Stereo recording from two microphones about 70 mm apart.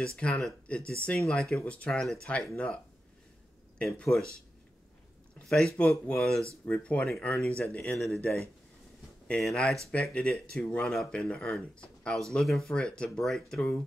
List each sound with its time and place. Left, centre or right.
0.0 s speech: centre
1.6 s speech: centre
5.8 s speech: centre
9.4 s speech: centre